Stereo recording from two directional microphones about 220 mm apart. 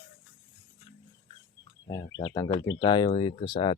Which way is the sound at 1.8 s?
15° left (ahead or behind).